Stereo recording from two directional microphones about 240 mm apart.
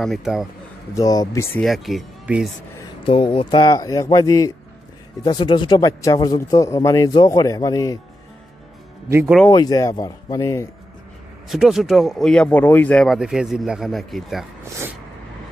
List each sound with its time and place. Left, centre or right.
0.0 s speech: centre
0.9 s speech: centre
3.0 s speech: left
9.1 s speech: centre
9.5 s speech: centre
11.4 s speech: centre